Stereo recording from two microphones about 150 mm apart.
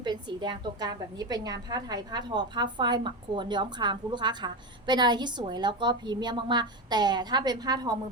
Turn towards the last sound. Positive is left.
turn(degrees=-25)  # may be behind; listen again after turning